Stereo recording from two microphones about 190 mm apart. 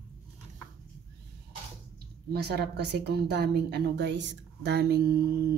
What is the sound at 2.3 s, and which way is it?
A woman's voice, 60° right (ahead or behind).